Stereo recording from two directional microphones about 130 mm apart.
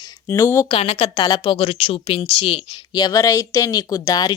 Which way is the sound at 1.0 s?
35° left (ahead or behind).